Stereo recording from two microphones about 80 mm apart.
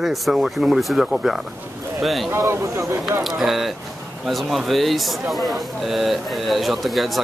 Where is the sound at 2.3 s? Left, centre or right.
Right.